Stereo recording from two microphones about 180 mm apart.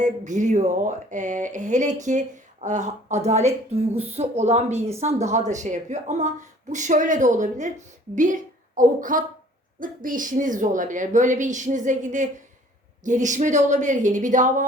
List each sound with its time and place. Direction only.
0.0 s a woman's voice: 40° right (ahead or behind)